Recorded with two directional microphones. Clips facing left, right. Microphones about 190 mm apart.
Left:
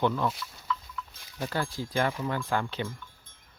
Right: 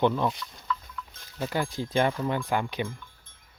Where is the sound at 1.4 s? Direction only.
15° right (ahead or behind).